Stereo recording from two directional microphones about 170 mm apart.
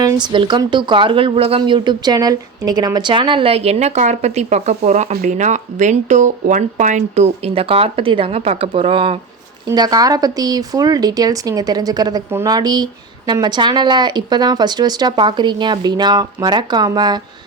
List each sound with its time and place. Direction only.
0.0 s speech: 25° right (ahead or behind)
9.6 s speech: 20° right (ahead or behind)